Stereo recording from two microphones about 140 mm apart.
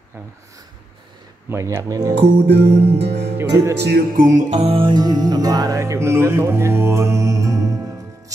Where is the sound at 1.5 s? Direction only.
20° right (ahead or behind).